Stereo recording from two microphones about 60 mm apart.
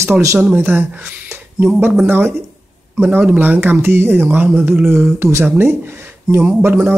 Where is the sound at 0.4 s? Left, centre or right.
Right.